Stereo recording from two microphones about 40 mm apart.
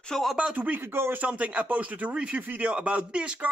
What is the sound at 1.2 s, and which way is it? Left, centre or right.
Speech, right.